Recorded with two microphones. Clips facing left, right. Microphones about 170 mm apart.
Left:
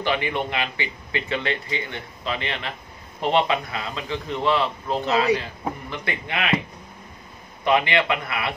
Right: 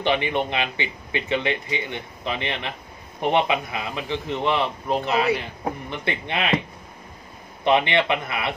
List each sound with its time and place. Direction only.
0.0 s a man's voice: 20° right (ahead or behind)
7.6 s speech: 25° right (ahead or behind)